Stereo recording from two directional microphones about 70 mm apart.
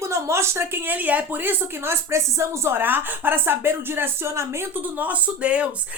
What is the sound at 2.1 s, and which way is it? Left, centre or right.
A woman's voice, right.